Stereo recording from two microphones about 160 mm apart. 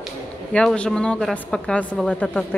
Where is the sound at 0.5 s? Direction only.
5° left (ahead or behind).